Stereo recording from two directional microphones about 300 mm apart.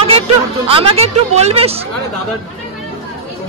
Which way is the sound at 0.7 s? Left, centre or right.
Centre.